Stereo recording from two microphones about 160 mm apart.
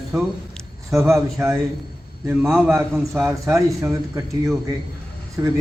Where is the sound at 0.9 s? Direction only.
15° right (ahead or behind).